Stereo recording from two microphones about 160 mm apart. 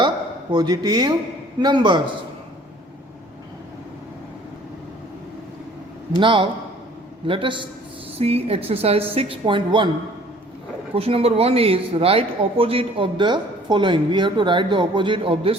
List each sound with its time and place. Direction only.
0.5 s speech: 25° right (ahead or behind)
6.1 s a man's voice: 30° right (ahead or behind)
10.9 s a man's voice: 35° right (ahead or behind)